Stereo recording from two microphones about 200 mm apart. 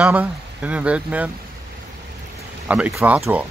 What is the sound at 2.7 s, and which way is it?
Speech, 10° right (ahead or behind).